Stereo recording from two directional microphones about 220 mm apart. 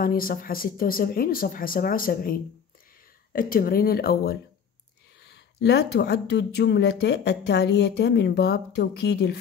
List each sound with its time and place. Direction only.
0.0 s speech: 40° left (ahead or behind)